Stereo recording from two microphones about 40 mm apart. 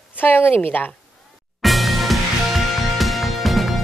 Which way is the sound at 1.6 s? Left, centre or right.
Centre.